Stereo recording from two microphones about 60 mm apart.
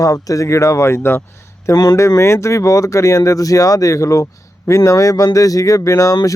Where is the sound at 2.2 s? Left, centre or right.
Left.